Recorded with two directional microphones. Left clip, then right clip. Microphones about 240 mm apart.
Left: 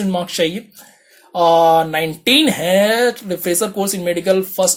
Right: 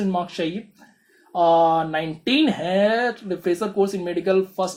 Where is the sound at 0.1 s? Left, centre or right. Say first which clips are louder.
Left 6 dB; left.